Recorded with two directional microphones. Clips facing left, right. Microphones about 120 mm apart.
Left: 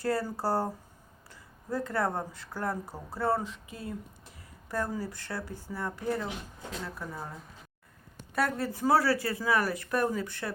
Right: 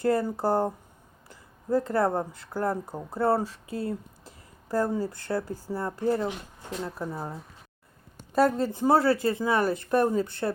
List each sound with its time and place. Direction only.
0.0 s speech: 20° right (ahead or behind)
1.3 s a sound: 25° right (ahead or behind)
2.1 s speech: 25° right (ahead or behind)
8.4 s speech: 25° right (ahead or behind)